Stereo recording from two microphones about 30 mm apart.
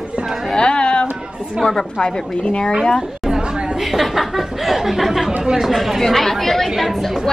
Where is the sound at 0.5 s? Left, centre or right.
Left.